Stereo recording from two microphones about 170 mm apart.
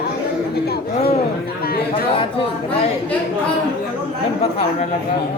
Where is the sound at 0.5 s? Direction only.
70° left (ahead or behind).